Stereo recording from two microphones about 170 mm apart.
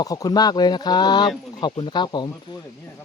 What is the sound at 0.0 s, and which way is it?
Speech, 20° left (ahead or behind).